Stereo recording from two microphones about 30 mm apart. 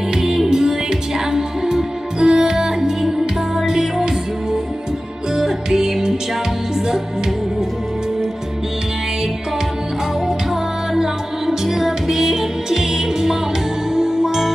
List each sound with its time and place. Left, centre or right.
0.2 s music: centre
2.1 s music: right
5.3 s music: centre
10.2 s music: centre